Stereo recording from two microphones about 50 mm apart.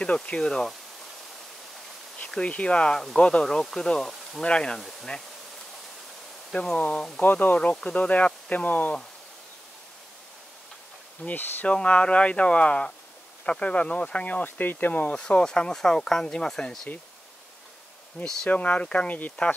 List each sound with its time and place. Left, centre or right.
0.0 s speech: left
0.5 s speech: centre
2.4 s speech: left
6.5 s speech: left
7.2 s speech: left
11.2 s speech: left
11.6 s speech: left
18.2 s speech: left